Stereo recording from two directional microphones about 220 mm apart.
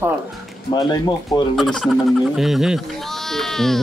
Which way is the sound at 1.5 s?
Centre (ahead or behind).